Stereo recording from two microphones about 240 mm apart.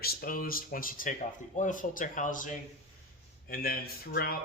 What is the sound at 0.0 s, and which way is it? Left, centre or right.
Speech, left.